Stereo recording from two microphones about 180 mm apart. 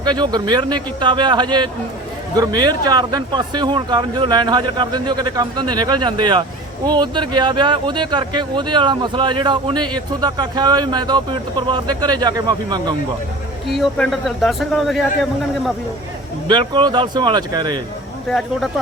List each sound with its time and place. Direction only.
0.0 s speech: 25° right (ahead or behind)
13.7 s speech: centre (ahead or behind)
16.5 s speech: 25° right (ahead or behind)
18.3 s speech: centre (ahead or behind)